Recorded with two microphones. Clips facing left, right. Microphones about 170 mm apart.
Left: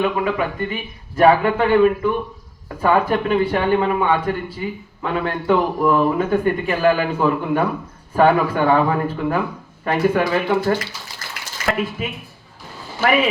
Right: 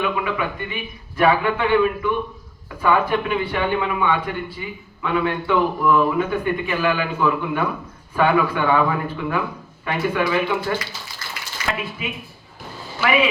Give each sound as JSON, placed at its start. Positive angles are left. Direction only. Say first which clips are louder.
{"t": 0.0, "sound": "speech", "louder": "left 3 dB", "side_deg": 40}